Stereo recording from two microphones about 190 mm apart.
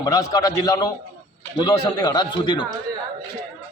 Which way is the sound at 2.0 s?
20° left (ahead or behind).